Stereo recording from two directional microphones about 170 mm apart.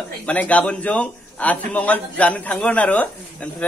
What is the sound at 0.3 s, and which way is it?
A man's voice, 10° left (ahead or behind).